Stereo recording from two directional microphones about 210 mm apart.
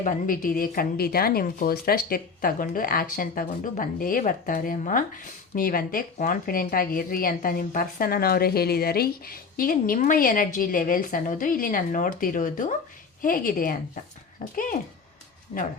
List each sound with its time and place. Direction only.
0.0 s a woman's voice: 40° left (ahead or behind)